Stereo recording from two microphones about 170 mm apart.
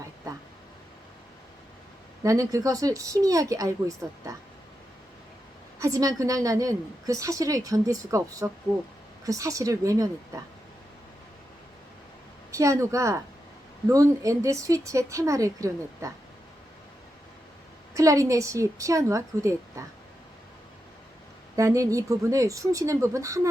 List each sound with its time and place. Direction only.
2.2 s a woman's voice: 20° right (ahead or behind)
5.8 s a woman's voice: 20° right (ahead or behind)
12.5 s a woman's voice: 20° right (ahead or behind)
17.9 s a woman's voice: 20° right (ahead or behind)
21.5 s a woman's voice: 20° right (ahead or behind)